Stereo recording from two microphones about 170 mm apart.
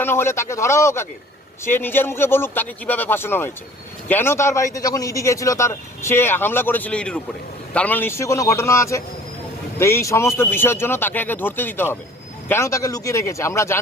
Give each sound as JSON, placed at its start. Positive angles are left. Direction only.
{"t": 0.0, "sound": "a man's voice", "side_deg": 15}